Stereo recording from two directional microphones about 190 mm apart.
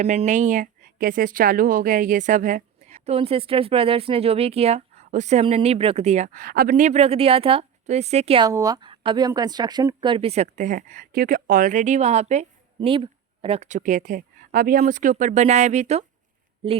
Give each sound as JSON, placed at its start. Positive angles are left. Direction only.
{"t": 0.0, "sound": "a woman's voice", "side_deg": -35}
{"t": 8.4, "sound": "a woman's voice", "side_deg": -20}